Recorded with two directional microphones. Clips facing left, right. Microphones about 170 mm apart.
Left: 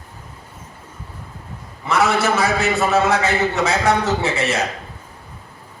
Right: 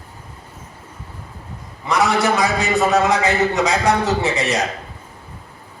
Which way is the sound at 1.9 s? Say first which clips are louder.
Even; 15° right (ahead or behind).